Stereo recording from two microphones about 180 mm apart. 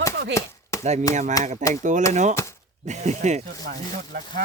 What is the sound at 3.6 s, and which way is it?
Speech, 50° right (ahead or behind).